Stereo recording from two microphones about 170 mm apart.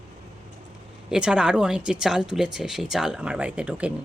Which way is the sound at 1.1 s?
5° right (ahead or behind).